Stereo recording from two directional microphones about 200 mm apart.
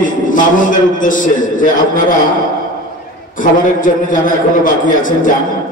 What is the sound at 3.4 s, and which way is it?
A man's voice, 40° left (ahead or behind).